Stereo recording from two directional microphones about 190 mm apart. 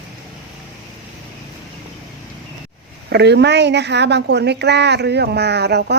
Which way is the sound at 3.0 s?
60° right (ahead or behind).